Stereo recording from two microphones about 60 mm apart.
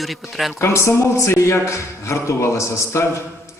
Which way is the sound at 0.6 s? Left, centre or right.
Left.